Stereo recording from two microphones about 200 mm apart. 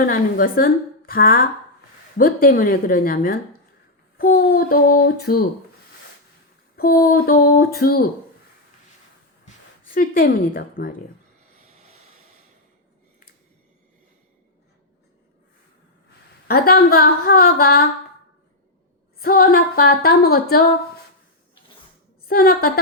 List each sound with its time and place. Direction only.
0.0 s a woman's voice: 45° left (ahead or behind)
6.7 s a woman's voice: 45° left (ahead or behind)
9.8 s a woman's voice: 45° left (ahead or behind)
16.5 s a woman's voice: 50° left (ahead or behind)
19.2 s a woman's voice: 45° left (ahead or behind)
22.3 s a woman's voice: 50° left (ahead or behind)